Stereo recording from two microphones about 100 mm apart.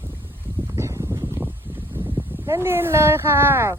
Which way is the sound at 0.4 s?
20° right (ahead or behind).